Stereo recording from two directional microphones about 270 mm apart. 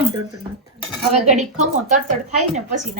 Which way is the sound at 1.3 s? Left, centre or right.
Right.